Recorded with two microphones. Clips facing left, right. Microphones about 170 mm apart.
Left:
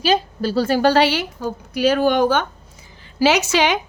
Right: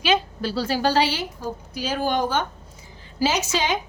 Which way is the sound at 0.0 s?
40° left (ahead or behind).